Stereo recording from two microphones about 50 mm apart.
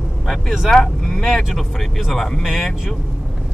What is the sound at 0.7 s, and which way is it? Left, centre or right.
Speech, centre.